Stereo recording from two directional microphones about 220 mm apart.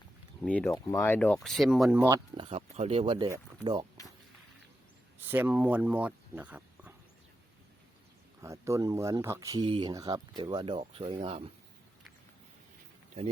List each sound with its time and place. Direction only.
0.4 s speech: 5° left (ahead or behind); by 3.8 s 20° right (ahead or behind)
5.2 s speech: 10° right (ahead or behind)
8.4 s speech: 15° right (ahead or behind)